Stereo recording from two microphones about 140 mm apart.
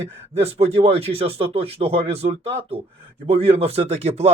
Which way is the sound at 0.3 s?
45° right (ahead or behind).